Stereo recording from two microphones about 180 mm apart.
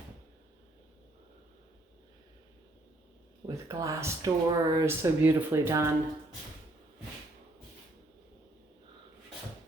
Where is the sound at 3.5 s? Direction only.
15° right (ahead or behind).